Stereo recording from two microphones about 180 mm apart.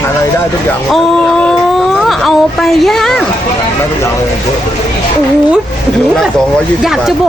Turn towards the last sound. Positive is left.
turn(degrees=0)  # may be behind; listen again after turning